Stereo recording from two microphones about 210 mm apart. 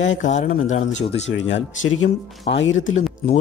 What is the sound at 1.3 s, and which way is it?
Speech, 60° left (ahead or behind).